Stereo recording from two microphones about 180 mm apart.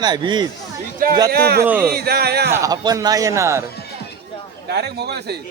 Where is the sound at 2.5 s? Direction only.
20° right (ahead or behind).